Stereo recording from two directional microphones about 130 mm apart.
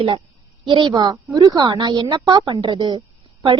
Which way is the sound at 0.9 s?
30° right (ahead or behind).